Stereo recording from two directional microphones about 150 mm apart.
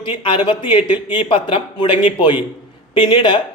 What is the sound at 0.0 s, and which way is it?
A man's voice, 35° left (ahead or behind).